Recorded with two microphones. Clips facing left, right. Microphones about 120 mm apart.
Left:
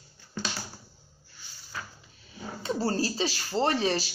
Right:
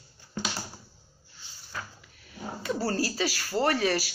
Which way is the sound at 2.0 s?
25° left (ahead or behind).